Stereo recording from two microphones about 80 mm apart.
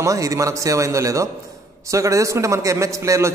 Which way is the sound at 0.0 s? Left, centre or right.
Right.